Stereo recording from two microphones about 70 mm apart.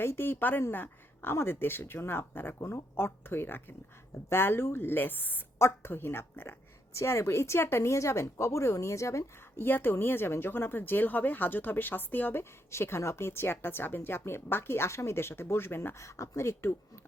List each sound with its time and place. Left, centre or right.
0.0 s speech: left
5.5 s speech: left
6.9 s a woman's voice: left
9.6 s speech: left
16.0 s a woman's voice: left